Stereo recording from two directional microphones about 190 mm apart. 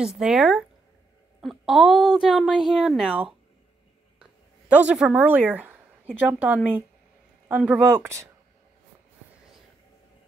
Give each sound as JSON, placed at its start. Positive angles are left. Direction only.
{"t": 0.0, "sound": "a woman's voice", "side_deg": 0}